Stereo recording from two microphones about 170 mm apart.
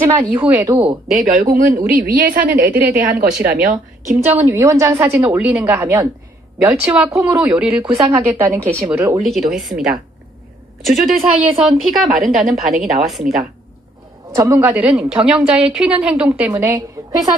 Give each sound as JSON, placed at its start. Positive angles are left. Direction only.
{"t": 0.0, "sound": "speech", "side_deg": -20}
{"t": 0.4, "sound": "a woman's voice", "side_deg": -10}
{"t": 1.2, "sound": "a woman's voice", "side_deg": -50}
{"t": 4.4, "sound": "a woman's voice", "side_deg": -15}
{"t": 7.8, "sound": "a woman's voice", "side_deg": -20}
{"t": 9.2, "sound": "a woman's voice", "side_deg": 0}
{"t": 10.9, "sound": "a woman's voice", "side_deg": 0}
{"t": 14.3, "sound": "a woman's voice", "side_deg": -15}